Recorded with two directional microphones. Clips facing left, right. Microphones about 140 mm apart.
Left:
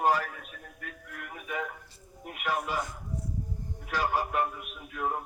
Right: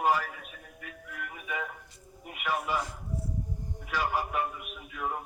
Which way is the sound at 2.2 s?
50° left (ahead or behind).